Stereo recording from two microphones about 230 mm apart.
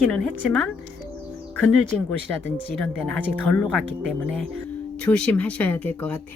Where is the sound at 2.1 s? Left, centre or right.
Centre.